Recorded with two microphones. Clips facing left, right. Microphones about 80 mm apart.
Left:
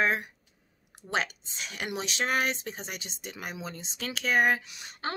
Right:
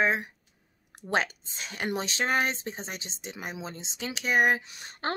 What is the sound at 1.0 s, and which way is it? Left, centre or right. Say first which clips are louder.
Speech: right 3 dB; right.